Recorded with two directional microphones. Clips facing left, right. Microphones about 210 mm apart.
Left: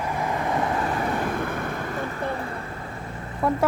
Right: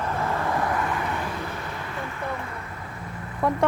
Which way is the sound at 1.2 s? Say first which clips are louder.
Left 5 dB; 50° left (ahead or behind).